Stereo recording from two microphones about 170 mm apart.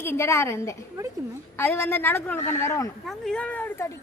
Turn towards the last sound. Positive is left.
turn(degrees=10)  # may be behind; listen again after turning